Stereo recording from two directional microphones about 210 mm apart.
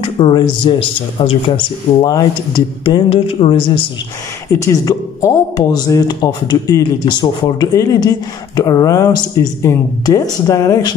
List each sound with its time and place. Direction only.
0.0 s speech: 25° left (ahead or behind)
4.5 s speech: 15° left (ahead or behind)